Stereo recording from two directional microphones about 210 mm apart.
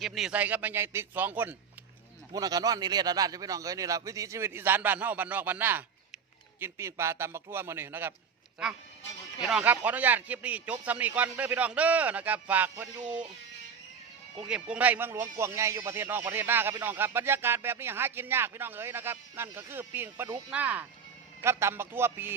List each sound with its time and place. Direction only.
0.0 s speech: centre (ahead or behind)
9.5 s speech: 5° right (ahead or behind)
14.4 s speech: 5° right (ahead or behind)